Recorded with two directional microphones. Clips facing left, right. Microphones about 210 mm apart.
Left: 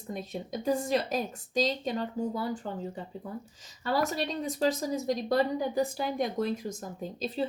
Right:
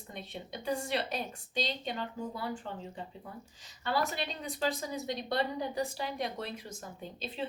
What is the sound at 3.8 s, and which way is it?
A woman's voice, 40° left (ahead or behind).